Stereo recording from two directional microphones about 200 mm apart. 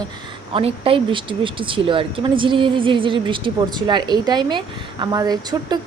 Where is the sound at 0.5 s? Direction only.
25° right (ahead or behind).